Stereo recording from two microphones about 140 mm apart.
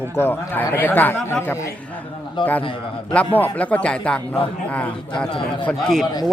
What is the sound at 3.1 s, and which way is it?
A man's voice, 10° left (ahead or behind).